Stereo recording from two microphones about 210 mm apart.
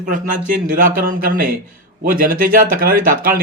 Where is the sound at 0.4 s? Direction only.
40° right (ahead or behind).